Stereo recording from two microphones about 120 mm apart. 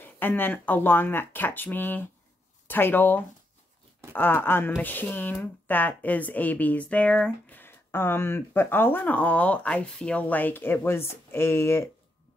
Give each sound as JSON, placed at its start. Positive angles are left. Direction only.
{"t": 0.0, "sound": "speech", "side_deg": 15}